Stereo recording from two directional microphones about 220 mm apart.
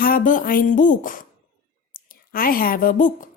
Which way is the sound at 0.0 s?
40° left (ahead or behind).